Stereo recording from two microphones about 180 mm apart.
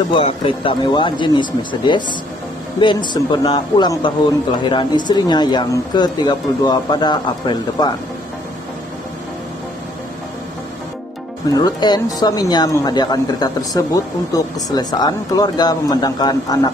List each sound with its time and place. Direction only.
0.1 s speech: 30° left (ahead or behind)
11.4 s speech: 20° left (ahead or behind)